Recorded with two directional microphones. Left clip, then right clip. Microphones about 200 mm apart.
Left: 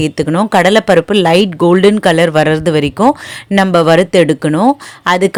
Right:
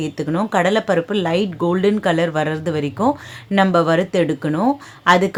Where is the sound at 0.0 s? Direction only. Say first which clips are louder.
Left 8 dB; 40° left (ahead or behind).